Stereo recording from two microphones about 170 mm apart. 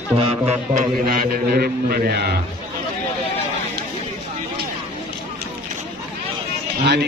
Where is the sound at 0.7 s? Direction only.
60° right (ahead or behind).